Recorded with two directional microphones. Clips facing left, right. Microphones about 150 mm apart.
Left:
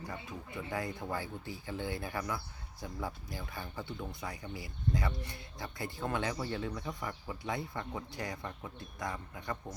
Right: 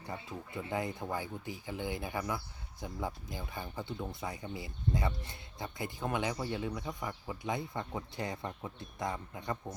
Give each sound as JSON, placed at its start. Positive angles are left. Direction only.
{"t": 0.0, "sound": "speech", "side_deg": -25}